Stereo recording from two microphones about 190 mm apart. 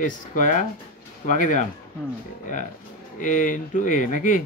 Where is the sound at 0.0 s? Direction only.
40° left (ahead or behind).